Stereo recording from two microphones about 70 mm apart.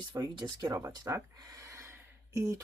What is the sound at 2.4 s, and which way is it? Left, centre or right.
Speech, right.